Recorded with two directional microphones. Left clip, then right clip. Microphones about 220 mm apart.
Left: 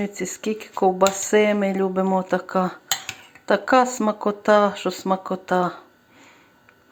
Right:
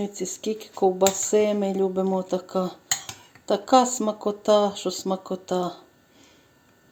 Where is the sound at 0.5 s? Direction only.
25° left (ahead or behind).